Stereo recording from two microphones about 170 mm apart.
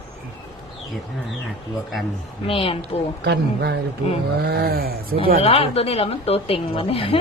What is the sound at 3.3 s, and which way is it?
Speech, 80° right.